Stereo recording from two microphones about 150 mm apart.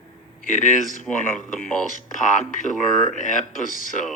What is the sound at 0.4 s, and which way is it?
Speech, 60° left (ahead or behind).